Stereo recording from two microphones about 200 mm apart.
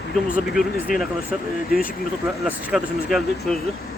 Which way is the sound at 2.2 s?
10° right (ahead or behind).